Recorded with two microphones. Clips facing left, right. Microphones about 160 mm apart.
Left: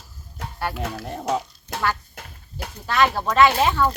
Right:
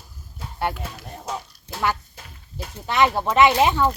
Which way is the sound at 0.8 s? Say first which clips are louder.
Left 6 dB; 85° left.